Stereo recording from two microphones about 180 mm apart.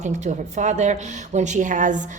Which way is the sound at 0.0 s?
40° right (ahead or behind).